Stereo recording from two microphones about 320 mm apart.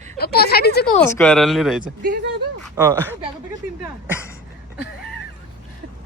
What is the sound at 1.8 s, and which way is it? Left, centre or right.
Speech, right.